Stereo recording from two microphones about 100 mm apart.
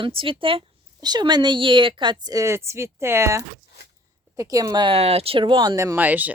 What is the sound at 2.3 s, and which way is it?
Speech, 30° right (ahead or behind).